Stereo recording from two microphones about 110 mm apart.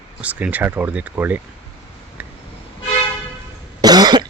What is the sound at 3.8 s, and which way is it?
Cough, 40° right (ahead or behind).